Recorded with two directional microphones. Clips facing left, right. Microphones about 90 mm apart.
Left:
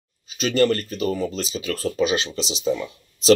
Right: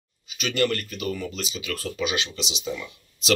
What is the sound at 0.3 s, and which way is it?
Speech, 35° left (ahead or behind).